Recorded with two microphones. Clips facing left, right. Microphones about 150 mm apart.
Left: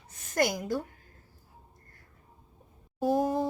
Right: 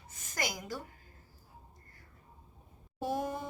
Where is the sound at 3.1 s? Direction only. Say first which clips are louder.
Left 8 dB; 35° left (ahead or behind).